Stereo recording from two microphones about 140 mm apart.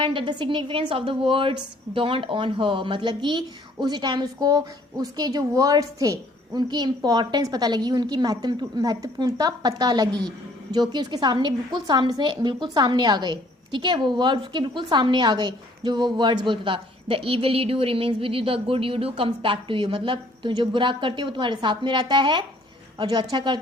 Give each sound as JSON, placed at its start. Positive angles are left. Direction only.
{"t": 0.0, "sound": "a woman's voice", "side_deg": -40}